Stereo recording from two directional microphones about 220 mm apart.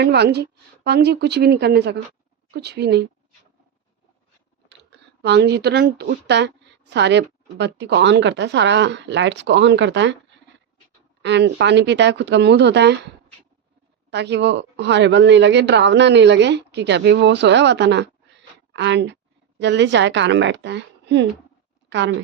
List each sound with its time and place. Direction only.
0.0 s speech: 50° right (ahead or behind)
4.9 s speech: 50° right (ahead or behind)
11.2 s speech: 50° right (ahead or behind)
14.1 s a woman's voice: 50° right (ahead or behind)